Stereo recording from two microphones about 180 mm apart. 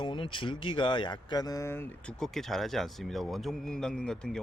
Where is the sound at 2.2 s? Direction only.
Centre (ahead or behind).